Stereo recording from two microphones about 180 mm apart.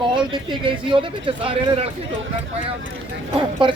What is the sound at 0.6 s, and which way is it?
Speech, 30° right (ahead or behind).